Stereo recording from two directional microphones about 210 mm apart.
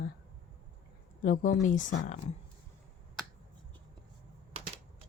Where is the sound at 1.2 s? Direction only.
40° left (ahead or behind).